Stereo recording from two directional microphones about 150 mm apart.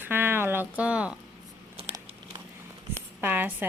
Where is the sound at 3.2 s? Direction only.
10° right (ahead or behind).